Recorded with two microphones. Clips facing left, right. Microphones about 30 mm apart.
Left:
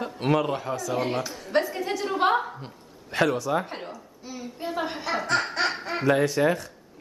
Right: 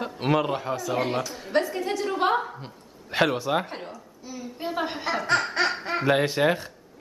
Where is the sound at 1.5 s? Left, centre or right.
Centre.